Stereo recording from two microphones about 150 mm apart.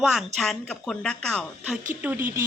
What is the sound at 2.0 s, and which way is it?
Speech, 15° right (ahead or behind).